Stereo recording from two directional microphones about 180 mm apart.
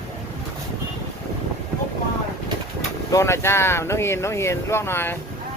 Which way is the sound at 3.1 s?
15° left (ahead or behind).